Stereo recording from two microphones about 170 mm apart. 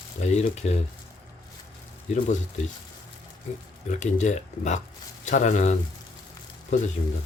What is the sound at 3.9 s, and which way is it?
Speech, 45° left (ahead or behind).